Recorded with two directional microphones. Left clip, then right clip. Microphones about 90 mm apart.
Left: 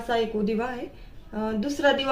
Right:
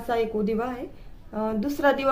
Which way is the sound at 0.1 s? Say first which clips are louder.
Even; 50° right (ahead or behind).